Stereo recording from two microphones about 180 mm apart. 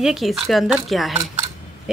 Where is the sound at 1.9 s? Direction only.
5° right (ahead or behind).